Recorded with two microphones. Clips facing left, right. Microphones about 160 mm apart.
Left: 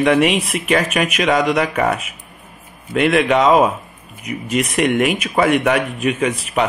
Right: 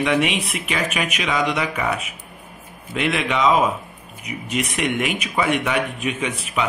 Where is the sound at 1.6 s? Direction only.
50° left (ahead or behind).